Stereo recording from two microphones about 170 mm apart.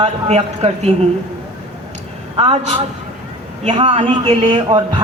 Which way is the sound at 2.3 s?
30° right (ahead or behind).